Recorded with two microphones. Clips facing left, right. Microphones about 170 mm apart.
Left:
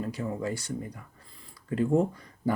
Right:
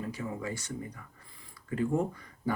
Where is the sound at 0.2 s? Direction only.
35° left (ahead or behind).